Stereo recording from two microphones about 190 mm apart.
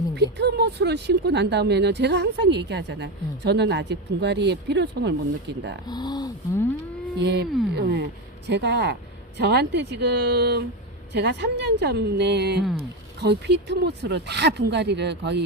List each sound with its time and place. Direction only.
0.2 s speech: 60° right (ahead or behind)
5.8 s speech: 20° left (ahead or behind)
7.2 s speech: 65° right (ahead or behind)